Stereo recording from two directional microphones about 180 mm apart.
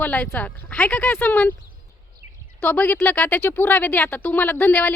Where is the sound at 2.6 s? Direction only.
10° left (ahead or behind).